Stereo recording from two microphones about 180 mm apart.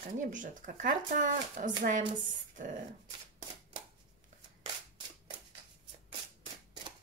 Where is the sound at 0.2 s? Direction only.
45° right (ahead or behind).